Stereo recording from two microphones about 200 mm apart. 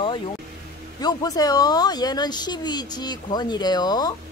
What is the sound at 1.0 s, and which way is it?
Speech, 20° left (ahead or behind).